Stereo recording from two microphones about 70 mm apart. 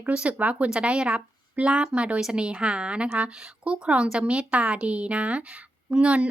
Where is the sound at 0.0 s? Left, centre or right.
Centre.